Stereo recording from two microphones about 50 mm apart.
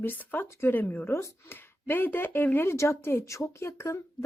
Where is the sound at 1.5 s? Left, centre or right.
Left.